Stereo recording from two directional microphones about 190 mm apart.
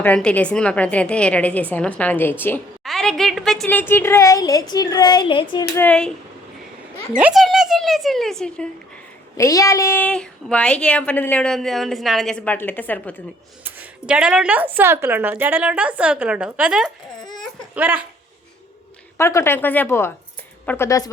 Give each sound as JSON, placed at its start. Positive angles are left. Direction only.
{"t": 0.0, "sound": "a woman's voice", "side_deg": 5}
{"t": 5.7, "sound": "a woman's voice", "side_deg": 10}
{"t": 7.2, "sound": "speech", "side_deg": -5}
{"t": 9.4, "sound": "a woman's voice", "side_deg": 15}
{"t": 13.7, "sound": "a woman's voice", "side_deg": -5}
{"t": 17.3, "sound": "baby cry", "side_deg": -10}
{"t": 19.1, "sound": "a woman's voice", "side_deg": 15}